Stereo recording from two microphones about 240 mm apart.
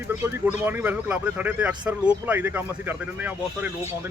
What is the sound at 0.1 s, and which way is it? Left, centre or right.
Speech, centre.